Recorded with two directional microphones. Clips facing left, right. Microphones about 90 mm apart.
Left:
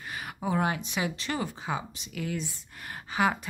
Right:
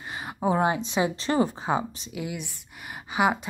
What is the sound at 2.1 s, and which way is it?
Speech, 15° right (ahead or behind).